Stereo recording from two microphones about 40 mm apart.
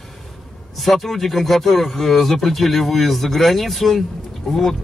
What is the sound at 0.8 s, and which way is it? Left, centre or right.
Speech, centre.